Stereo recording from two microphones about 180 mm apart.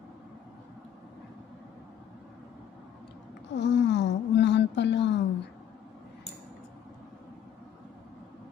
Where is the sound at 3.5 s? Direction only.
75° left (ahead or behind).